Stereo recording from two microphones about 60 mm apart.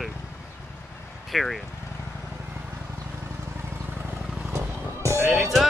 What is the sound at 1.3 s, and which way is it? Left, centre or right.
Speech, centre.